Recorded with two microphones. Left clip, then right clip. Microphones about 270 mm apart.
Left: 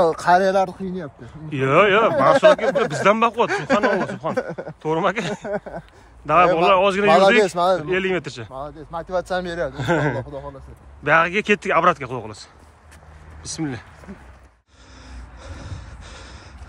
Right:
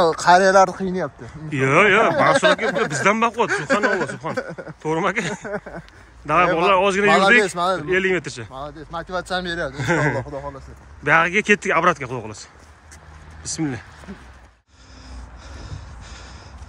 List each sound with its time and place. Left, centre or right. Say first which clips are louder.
0.0 s speech: right 2 dB; centre
3.4 s speech: even; left
4.8 s speech: even; centre
7.1 s speech: left 1 dB; left
7.8 s speech: right 2 dB; centre
8.5 s speech: even; left
9.8 s speech: right 1 dB; centre
13.4 s speech: right 2 dB; centre
15.4 s snort: left 2 dB; centre